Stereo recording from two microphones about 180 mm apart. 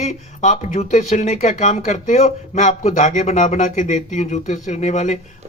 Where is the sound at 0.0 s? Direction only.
40° left (ahead or behind).